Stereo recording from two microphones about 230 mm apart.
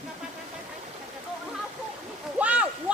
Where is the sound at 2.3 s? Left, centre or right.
Centre.